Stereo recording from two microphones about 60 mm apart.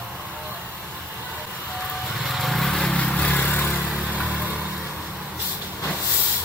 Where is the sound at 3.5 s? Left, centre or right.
Left.